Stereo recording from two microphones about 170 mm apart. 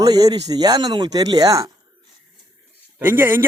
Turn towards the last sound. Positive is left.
turn(degrees=-10)  # may be behind; listen again after turning